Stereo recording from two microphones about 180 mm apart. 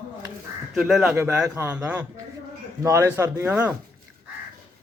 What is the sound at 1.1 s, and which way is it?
A man's voice, 15° right (ahead or behind).